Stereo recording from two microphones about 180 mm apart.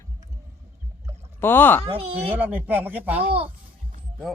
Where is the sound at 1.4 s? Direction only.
10° left (ahead or behind).